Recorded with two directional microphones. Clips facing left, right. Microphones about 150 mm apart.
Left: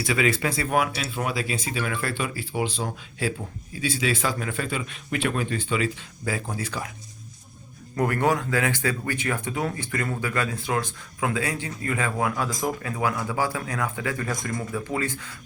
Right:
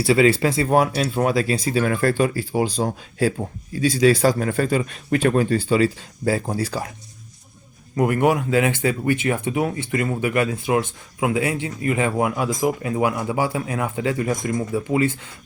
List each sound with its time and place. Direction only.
0.0 s speech: 30° right (ahead or behind)
7.9 s a man's voice: 15° right (ahead or behind)